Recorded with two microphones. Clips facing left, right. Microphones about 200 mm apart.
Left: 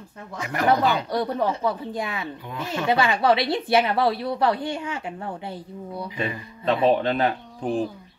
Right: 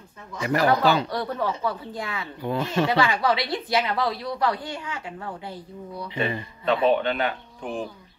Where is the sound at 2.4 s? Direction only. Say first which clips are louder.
Right 9 dB; 35° right (ahead or behind).